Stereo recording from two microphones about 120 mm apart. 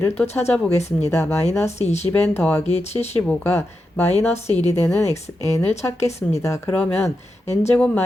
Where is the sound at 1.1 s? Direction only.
20° left (ahead or behind).